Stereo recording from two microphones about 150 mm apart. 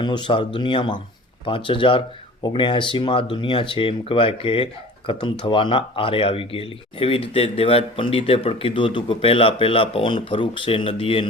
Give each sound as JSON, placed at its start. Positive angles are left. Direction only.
{"t": 0.0, "sound": "speech", "side_deg": 30}